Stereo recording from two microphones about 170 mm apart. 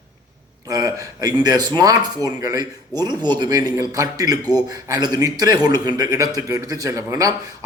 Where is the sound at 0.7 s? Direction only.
20° right (ahead or behind).